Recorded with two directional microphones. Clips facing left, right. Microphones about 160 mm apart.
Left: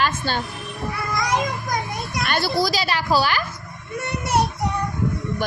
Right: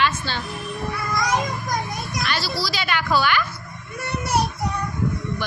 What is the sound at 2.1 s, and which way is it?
Speech, 55° left (ahead or behind).